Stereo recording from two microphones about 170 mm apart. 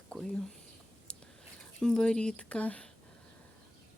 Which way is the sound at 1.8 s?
5° left (ahead or behind).